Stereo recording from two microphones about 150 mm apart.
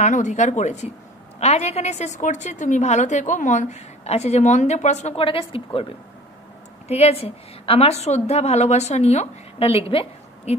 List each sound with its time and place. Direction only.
0.0 s a woman's voice: 55° left (ahead or behind); by 10.5 s 40° left (ahead or behind)